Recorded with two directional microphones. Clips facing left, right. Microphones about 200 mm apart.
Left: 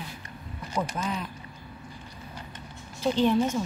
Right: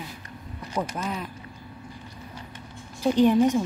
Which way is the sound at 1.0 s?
5° right (ahead or behind).